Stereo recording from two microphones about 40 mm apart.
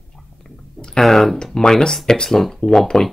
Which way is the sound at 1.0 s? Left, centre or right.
Centre.